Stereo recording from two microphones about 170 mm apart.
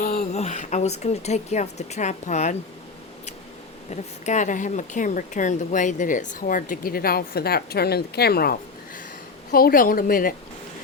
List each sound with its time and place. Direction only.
0.1 s speech: 40° left (ahead or behind)
4.3 s a woman's voice: 45° left (ahead or behind)